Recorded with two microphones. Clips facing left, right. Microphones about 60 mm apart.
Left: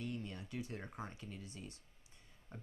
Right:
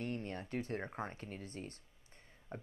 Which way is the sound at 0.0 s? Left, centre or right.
Right.